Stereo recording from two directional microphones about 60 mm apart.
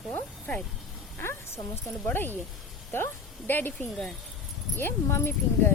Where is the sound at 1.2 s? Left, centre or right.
Left.